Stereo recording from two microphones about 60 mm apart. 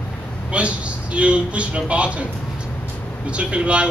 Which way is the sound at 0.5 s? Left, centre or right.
Right.